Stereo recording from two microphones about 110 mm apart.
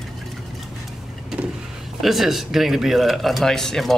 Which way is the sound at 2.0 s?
Centre (ahead or behind).